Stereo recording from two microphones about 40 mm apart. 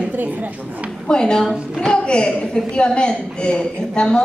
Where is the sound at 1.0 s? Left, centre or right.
Left.